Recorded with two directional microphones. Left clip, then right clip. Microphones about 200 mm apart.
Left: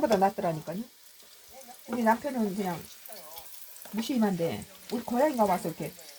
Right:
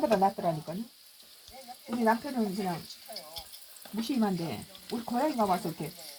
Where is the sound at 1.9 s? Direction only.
50° left (ahead or behind).